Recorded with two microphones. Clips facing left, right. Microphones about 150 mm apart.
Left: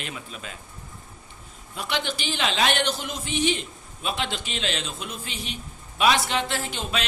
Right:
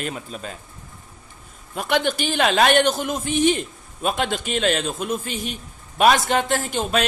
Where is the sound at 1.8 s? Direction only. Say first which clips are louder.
Right 8 dB; 50° right (ahead or behind).